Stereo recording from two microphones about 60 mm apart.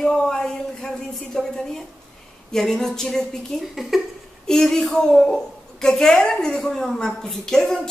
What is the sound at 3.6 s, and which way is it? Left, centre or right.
Speech, centre.